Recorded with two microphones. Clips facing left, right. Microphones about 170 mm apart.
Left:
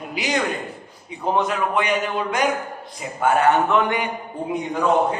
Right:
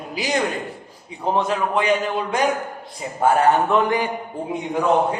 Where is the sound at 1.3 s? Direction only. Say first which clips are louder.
Right 1 dB; 30° right (ahead or behind).